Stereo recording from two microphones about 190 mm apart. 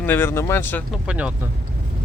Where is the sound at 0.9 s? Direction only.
5° right (ahead or behind).